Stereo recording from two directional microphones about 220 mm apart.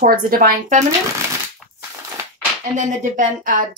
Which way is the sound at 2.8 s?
35° right (ahead or behind).